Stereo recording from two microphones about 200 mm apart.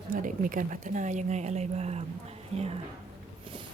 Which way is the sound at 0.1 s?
40° right (ahead or behind).